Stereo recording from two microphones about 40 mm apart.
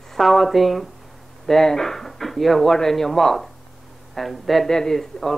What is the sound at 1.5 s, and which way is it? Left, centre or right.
Speech, centre.